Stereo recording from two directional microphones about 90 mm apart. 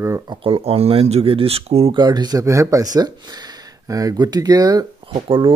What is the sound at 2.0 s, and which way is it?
Speech, 50° right (ahead or behind).